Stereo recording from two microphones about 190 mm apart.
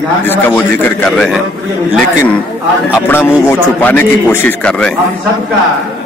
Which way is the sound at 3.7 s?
10° left (ahead or behind).